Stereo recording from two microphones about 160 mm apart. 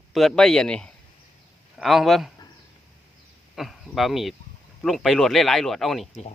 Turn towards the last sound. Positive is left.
turn(degrees=0)  # may be behind; listen again after turning